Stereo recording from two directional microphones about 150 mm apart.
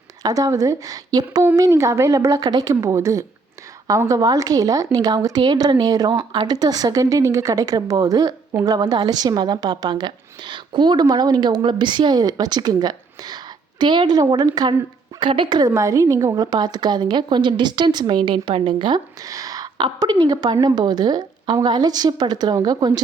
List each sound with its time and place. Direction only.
0.2 s a woman's voice: 25° right (ahead or behind)